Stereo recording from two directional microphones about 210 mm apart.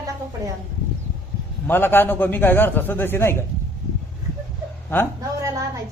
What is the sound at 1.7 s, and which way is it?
A man's voice, 10° left (ahead or behind).